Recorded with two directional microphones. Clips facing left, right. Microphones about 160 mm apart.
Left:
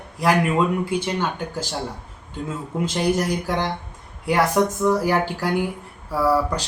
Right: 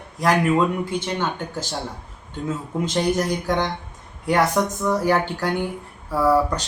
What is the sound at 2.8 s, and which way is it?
Speech, 10° left (ahead or behind).